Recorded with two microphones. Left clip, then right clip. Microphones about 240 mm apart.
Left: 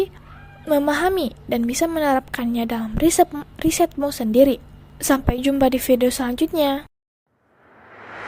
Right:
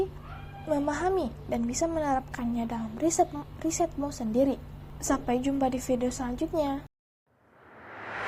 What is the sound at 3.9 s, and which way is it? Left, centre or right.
A woman's voice, left.